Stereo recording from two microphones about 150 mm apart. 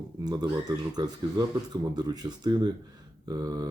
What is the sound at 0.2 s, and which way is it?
Speech, 25° right (ahead or behind).